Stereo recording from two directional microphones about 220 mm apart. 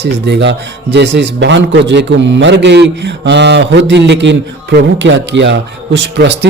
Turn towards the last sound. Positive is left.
turn(degrees=-50)  # may be behind; listen again after turning